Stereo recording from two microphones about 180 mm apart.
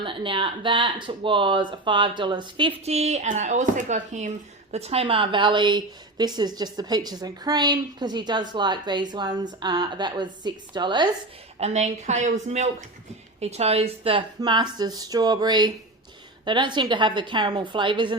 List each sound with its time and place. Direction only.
0.0 s a woman's voice: 30° right (ahead or behind)
11.6 s a woman's voice: 40° right (ahead or behind)